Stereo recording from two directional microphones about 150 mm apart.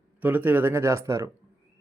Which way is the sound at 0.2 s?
10° right (ahead or behind).